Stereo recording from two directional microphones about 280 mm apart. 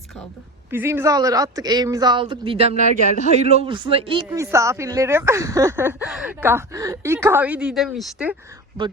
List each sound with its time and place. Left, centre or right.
0.7 s speech: centre